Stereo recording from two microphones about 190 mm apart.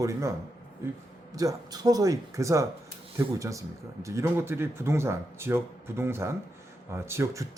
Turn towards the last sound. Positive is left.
turn(degrees=-15)  # may be behind; listen again after turning